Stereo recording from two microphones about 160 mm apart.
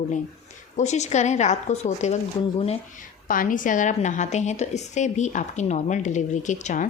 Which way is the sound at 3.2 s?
60° left (ahead or behind).